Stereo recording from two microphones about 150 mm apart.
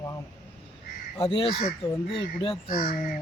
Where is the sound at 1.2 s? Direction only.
40° left (ahead or behind).